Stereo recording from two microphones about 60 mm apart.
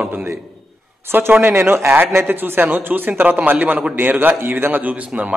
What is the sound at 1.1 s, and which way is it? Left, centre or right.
Speech, right.